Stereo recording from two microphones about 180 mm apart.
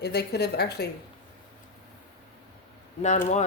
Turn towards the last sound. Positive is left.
turn(degrees=40)  # may be behind; listen again after turning